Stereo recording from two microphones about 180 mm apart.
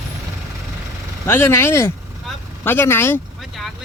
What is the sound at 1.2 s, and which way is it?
Speech, 15° left (ahead or behind).